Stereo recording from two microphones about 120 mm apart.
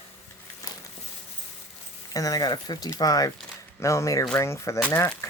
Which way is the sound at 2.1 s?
30° left (ahead or behind).